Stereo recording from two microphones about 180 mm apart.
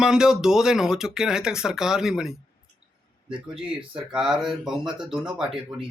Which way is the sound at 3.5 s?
30° right (ahead or behind).